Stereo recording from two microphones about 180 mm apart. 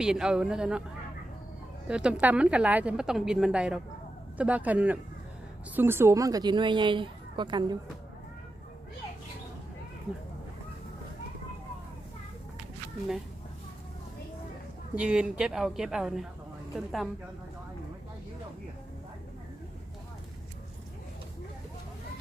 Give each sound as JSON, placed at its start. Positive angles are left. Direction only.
{"t": 0.0, "sound": "a woman's voice", "side_deg": -5}
{"t": 1.9, "sound": "a woman's voice", "side_deg": -5}
{"t": 14.9, "sound": "a woman's voice", "side_deg": -5}